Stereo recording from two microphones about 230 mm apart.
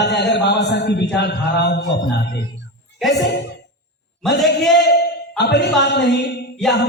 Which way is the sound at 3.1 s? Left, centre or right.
Left.